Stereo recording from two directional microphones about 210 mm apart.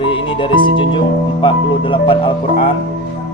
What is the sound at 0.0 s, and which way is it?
Speech, 25° left (ahead or behind).